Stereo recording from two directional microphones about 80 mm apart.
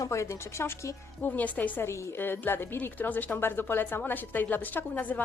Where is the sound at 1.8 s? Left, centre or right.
Left.